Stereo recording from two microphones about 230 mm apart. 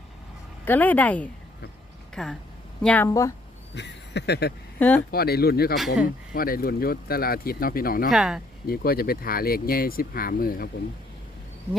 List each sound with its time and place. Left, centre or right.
0.6 s speech: centre
3.8 s speech: left
4.8 s speech: centre
5.1 s speech: left
5.7 s speech: centre
6.3 s speech: left
8.1 s speech: centre
8.6 s speech: left